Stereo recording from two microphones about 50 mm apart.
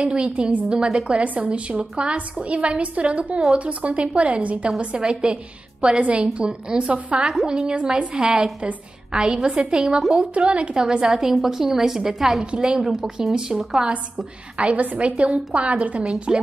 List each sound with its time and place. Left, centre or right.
0.0 s a woman's voice: right
0.7 s a woman's voice: centre
1.1 s a woman's voice: right
7.2 s a woman's voice: centre
10.5 s a woman's voice: right
11.1 s a woman's voice: centre
14.8 s a woman's voice: right
16.0 s a woman's voice: centre